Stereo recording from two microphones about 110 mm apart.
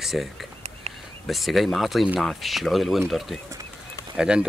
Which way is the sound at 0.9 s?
70° right (ahead or behind).